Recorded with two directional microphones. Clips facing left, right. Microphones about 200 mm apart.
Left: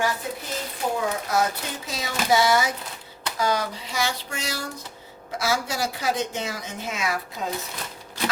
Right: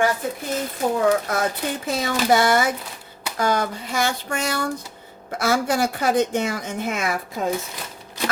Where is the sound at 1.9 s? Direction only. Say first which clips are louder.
Right 4 dB; 55° right (ahead or behind).